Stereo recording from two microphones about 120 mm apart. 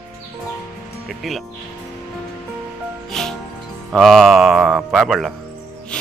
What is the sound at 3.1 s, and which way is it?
Music, 5° left (ahead or behind).